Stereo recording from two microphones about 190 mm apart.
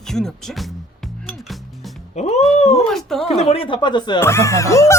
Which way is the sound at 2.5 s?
35° left (ahead or behind).